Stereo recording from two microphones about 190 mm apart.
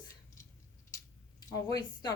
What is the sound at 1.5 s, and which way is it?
Speech, 20° left (ahead or behind).